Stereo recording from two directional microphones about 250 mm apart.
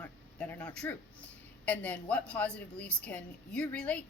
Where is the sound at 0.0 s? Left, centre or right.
Centre.